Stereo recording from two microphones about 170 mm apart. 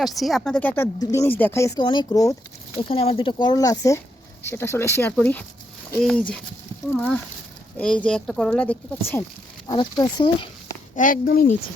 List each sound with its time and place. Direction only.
0.0 s a woman's voice: centre (ahead or behind); by 1.8 s 15° left (ahead or behind)
1.8 s speech: 30° left (ahead or behind)
2.9 s a woman's voice: 35° left (ahead or behind); by 6.2 s 5° left (ahead or behind)
7.8 s speech: 5° left (ahead or behind)
9.6 s speech: 20° left (ahead or behind)
10.9 s speech: 50° left (ahead or behind)